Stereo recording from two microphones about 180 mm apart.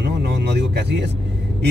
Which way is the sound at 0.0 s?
65° right (ahead or behind).